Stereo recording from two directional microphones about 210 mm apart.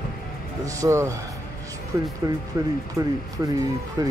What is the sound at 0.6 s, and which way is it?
Speech, 15° right (ahead or behind).